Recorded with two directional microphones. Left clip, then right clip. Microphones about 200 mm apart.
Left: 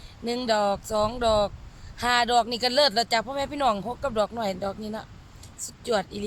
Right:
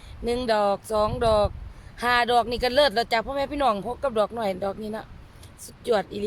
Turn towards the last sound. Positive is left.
turn(degrees=-15)  # may be behind; listen again after turning